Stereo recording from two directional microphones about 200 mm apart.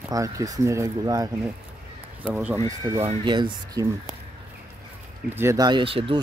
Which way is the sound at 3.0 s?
25° right (ahead or behind).